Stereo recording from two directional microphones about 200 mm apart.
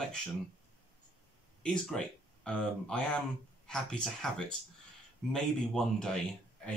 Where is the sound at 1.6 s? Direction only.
5° left (ahead or behind).